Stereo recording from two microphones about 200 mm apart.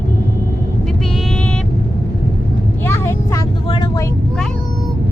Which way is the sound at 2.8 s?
15° left (ahead or behind).